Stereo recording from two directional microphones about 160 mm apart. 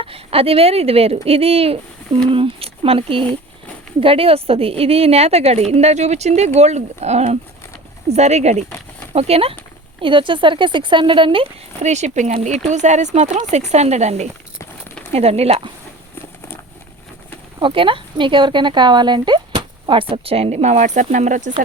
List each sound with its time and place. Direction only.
0.0 s speech: 35° right (ahead or behind)
11.8 s speech: 45° right (ahead or behind)
14.6 s a sound: 15° left (ahead or behind)
15.1 s speech: 40° right (ahead or behind)
17.6 s speech: 30° right (ahead or behind); by 21.5 s 50° right (ahead or behind)